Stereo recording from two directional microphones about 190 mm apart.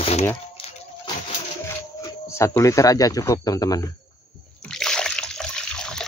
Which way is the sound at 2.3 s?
15° left (ahead or behind).